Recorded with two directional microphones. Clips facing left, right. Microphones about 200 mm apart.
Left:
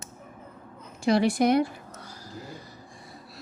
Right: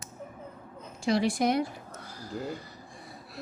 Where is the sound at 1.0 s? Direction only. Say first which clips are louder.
Left 4 dB; 60° left (ahead or behind).